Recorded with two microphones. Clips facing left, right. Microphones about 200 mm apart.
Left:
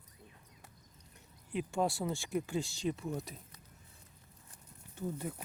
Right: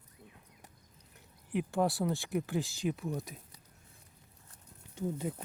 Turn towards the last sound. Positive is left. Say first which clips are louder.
# right 3 dB
turn(degrees=-20)  # may be behind; listen again after turning